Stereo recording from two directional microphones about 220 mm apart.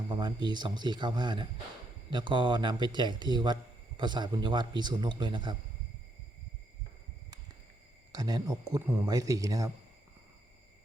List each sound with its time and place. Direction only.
0.1 s speech: 20° right (ahead or behind)
8.1 s speech: 20° right (ahead or behind)